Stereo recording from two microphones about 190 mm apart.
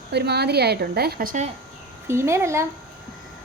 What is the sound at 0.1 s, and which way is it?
A woman's voice, 60° right (ahead or behind).